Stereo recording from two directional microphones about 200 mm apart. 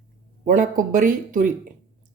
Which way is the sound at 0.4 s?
40° right (ahead or behind).